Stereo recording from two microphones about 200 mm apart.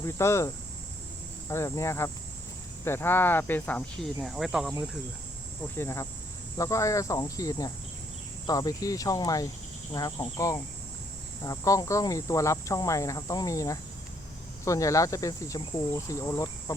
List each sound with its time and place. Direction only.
0.0 s speech: 15° left (ahead or behind); by 4.7 s centre (ahead or behind)
5.7 s speech: 15° left (ahead or behind)